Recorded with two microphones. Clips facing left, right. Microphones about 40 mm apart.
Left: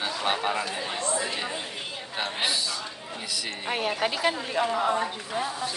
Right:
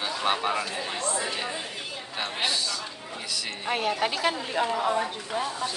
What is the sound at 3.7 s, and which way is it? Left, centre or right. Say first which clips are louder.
A man's voice: right 1 dB; centre.